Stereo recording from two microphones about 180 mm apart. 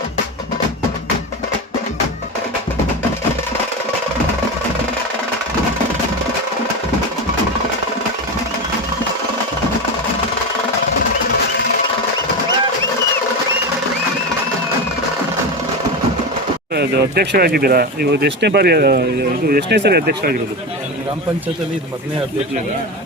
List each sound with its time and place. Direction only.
16.7 s speech: 65° right (ahead or behind)